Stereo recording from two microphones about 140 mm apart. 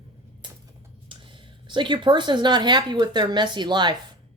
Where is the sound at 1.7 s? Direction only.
35° right (ahead or behind).